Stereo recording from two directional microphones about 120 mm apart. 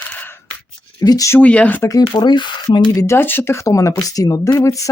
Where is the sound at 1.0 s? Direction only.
30° left (ahead or behind).